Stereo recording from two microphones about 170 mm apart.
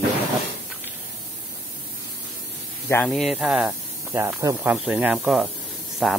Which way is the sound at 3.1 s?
Centre (ahead or behind).